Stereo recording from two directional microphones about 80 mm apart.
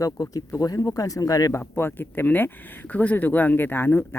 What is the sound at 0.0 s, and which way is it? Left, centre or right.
Speech, left.